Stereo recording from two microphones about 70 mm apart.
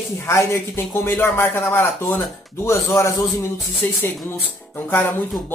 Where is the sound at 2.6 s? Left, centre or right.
Left.